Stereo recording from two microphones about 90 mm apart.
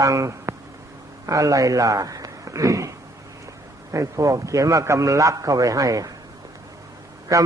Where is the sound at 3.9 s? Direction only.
35° right (ahead or behind).